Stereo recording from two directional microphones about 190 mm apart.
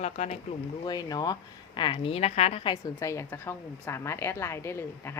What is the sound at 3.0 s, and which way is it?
Speech, 15° left (ahead or behind).